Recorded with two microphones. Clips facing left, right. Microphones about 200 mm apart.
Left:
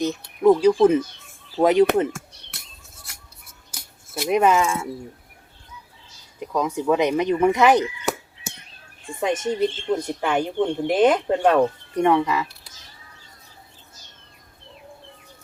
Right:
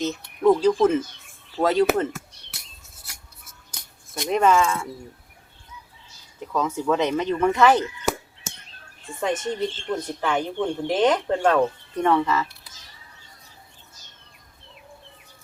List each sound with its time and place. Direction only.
0.0 s speech: 10° left (ahead or behind)
3.7 s cutlery: 5° left (ahead or behind)
6.4 s speech: 15° left (ahead or behind)
9.2 s speech: 15° left (ahead or behind)